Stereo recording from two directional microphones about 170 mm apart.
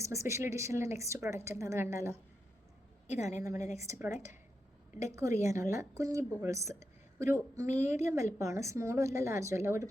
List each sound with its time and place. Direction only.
0.0 s a woman's voice: 15° right (ahead or behind)
3.1 s a woman's voice: 40° left (ahead or behind)
3.4 s a woman's voice: 20° right (ahead or behind)